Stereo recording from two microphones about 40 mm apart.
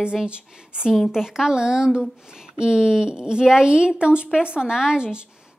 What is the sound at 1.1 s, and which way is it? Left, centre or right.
A woman's voice, centre.